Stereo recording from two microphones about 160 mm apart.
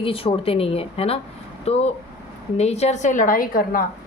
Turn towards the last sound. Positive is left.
turn(degrees=65)  # may be behind; listen again after turning